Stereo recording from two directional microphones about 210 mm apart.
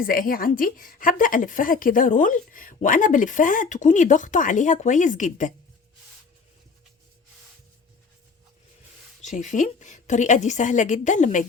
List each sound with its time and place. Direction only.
0.0 s a woman's voice: 45° left (ahead or behind)
9.2 s a woman's voice: 35° left (ahead or behind)